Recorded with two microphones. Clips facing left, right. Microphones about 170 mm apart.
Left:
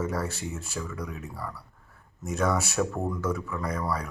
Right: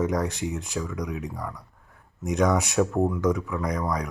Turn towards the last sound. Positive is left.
turn(degrees=-15)  # may be behind; listen again after turning